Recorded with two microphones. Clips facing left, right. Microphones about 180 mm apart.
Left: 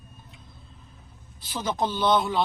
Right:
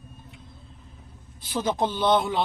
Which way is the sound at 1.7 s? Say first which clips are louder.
Right 1 dB; 20° right (ahead or behind).